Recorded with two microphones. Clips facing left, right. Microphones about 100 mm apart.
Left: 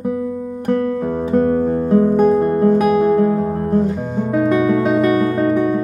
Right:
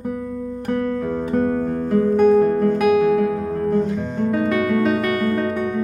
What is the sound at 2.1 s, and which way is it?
Music, 35° left (ahead or behind).